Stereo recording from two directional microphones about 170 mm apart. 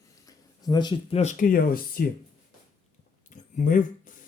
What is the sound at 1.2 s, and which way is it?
Speech, 50° left (ahead or behind).